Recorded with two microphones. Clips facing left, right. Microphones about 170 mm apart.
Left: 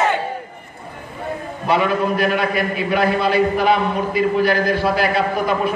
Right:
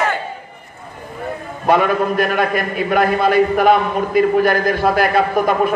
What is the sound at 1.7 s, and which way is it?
A man's voice, 50° right (ahead or behind).